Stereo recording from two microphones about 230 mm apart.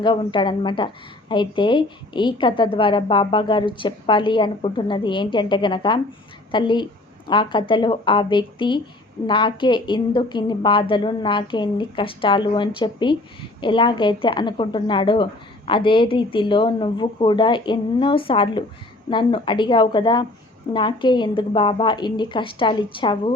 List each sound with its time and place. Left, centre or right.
0.0 s a woman's voice: left